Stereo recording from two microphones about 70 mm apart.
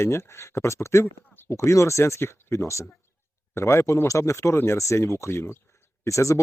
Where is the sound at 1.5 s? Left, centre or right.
Left.